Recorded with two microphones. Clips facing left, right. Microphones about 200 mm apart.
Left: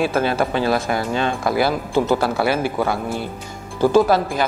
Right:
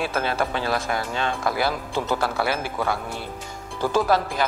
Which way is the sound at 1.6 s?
30° left (ahead or behind).